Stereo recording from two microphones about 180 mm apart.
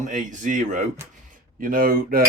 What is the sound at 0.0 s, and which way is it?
Speech, 45° right (ahead or behind).